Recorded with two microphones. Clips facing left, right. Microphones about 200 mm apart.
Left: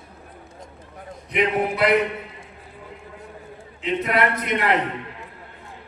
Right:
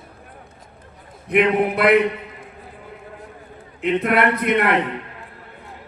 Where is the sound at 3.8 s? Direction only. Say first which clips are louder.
Right 4 dB; 55° right (ahead or behind).